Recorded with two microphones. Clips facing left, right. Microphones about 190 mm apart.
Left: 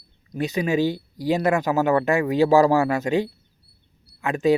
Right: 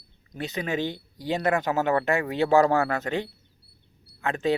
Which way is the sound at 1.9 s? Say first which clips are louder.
Left 5 dB; 25° left (ahead or behind).